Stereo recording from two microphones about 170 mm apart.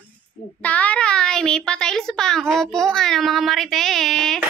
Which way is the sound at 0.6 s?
10° left (ahead or behind).